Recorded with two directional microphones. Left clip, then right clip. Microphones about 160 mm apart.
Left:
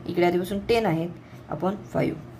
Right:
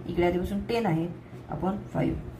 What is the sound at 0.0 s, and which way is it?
Speech, 55° left (ahead or behind).